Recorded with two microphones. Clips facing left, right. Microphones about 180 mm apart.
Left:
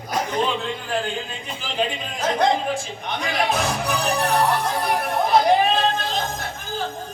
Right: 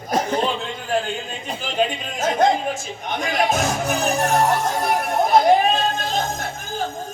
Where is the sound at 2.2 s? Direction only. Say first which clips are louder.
Right 2 dB; 45° right (ahead or behind).